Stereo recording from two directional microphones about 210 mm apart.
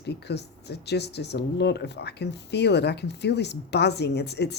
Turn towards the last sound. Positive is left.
turn(degrees=55)  # may be behind; listen again after turning